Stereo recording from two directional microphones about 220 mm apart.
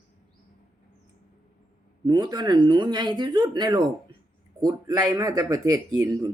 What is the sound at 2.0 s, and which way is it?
Speech, 20° right (ahead or behind).